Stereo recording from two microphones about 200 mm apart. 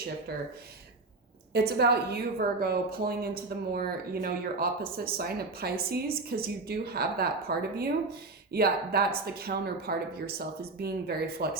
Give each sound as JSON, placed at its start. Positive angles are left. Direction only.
{"t": 0.3, "sound": "a woman's voice", "side_deg": -50}
{"t": 1.5, "sound": "a woman's voice", "side_deg": -55}